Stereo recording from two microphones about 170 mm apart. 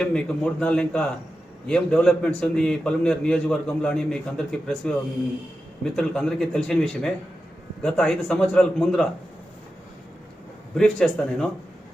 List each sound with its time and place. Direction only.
0.0 s a man's voice: 5° left (ahead or behind)
10.8 s a man's voice: centre (ahead or behind)